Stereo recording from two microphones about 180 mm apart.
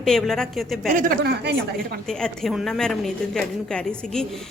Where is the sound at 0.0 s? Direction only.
Centre (ahead or behind).